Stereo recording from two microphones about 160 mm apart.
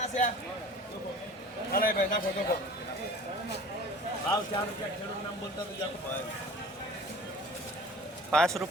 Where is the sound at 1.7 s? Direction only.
60° left (ahead or behind).